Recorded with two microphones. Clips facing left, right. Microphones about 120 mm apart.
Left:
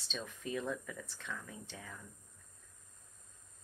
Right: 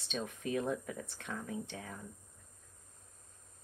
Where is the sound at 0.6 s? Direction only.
20° right (ahead or behind).